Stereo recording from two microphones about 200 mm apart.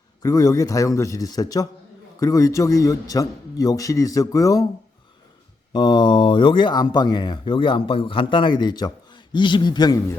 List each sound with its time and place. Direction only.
0.2 s a man's voice: 20° left (ahead or behind)
5.7 s speech: 20° left (ahead or behind)